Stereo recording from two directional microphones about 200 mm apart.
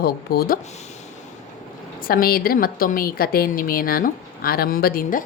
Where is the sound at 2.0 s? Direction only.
45° left (ahead or behind).